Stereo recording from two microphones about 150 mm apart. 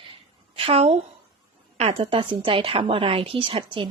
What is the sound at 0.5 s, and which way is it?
A woman's voice, 40° right (ahead or behind).